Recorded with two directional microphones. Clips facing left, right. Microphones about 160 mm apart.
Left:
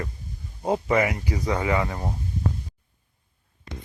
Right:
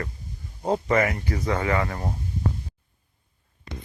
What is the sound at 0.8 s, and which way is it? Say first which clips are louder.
Speech: even; 15° left (ahead or behind).